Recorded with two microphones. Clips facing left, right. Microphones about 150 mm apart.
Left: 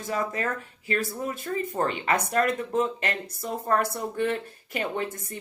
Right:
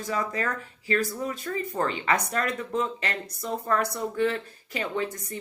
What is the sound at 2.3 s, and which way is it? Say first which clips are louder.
Speech: left 4 dB; 50° left (ahead or behind).